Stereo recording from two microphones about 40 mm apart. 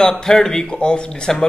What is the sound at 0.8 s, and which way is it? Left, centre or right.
Speech, left.